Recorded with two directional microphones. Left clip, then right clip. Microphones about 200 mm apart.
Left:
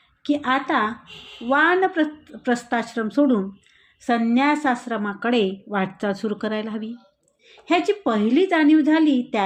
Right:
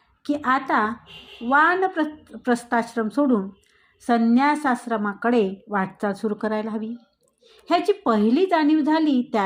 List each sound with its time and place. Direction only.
0.2 s a woman's voice: 20° right (ahead or behind)
4.3 s a woman's voice: 25° right (ahead or behind)
7.7 s a woman's voice: 25° right (ahead or behind)